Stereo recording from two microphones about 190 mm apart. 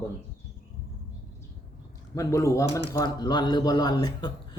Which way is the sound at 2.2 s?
15° left (ahead or behind).